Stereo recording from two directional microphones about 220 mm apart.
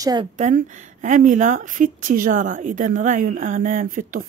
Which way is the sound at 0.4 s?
35° right (ahead or behind).